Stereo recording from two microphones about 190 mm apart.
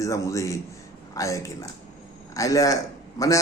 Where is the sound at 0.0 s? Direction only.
15° left (ahead or behind).